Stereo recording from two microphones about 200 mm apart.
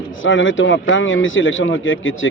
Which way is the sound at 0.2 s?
75° left (ahead or behind).